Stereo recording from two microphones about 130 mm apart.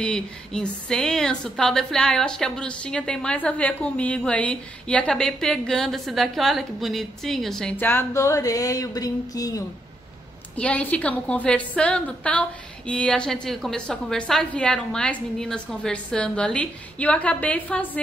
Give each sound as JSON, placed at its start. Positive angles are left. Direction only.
{"t": 0.0, "sound": "speech", "side_deg": 5}
{"t": 7.7, "sound": "a sound", "side_deg": 15}
{"t": 10.5, "sound": "a woman's voice", "side_deg": 10}